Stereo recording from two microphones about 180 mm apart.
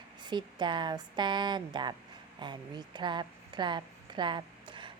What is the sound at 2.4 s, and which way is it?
Speech, 25° right (ahead or behind).